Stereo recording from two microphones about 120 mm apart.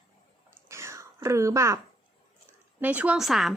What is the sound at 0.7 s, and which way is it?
Whispering, 25° right (ahead or behind).